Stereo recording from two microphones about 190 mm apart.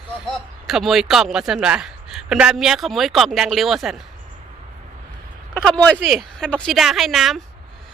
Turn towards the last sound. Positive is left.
turn(degrees=0)  # may be behind; listen again after turning